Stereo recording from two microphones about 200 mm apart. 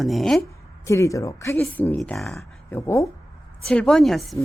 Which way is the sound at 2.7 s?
15° left (ahead or behind).